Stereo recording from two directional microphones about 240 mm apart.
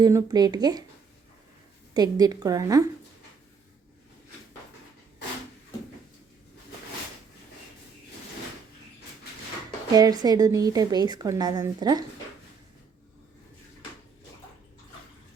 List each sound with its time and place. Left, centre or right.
0.0 s a woman's voice: centre
1.9 s a woman's voice: centre
9.9 s a woman's voice: centre